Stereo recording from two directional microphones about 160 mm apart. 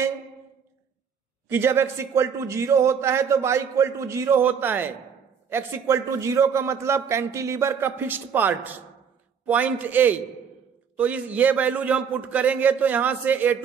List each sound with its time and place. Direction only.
1.5 s a man's voice: 15° right (ahead or behind)